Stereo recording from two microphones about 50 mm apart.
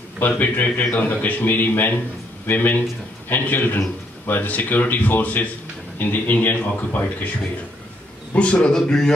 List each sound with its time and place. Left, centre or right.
0.4 s speech: left
8.4 s a man's voice: left